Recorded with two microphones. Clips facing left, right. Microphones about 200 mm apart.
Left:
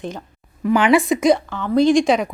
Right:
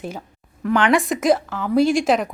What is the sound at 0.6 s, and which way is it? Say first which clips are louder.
Speech: left 3 dB; 10° left (ahead or behind).